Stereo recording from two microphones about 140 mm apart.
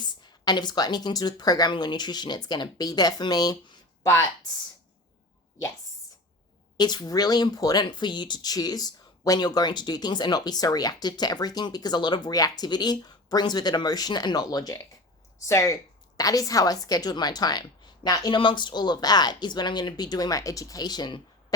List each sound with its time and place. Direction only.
0.1 s speech: 30° left (ahead or behind)
6.7 s speech: 30° left (ahead or behind)